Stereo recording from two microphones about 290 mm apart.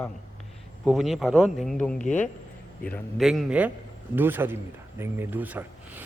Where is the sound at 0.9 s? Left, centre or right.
Centre.